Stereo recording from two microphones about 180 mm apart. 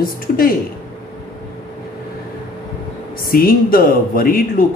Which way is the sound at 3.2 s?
55° left (ahead or behind).